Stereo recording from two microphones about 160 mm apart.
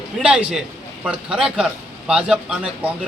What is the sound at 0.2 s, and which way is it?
A man's voice, 5° right (ahead or behind).